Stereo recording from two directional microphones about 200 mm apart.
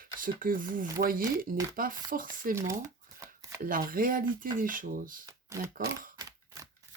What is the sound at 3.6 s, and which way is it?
Speech, 45° right (ahead or behind).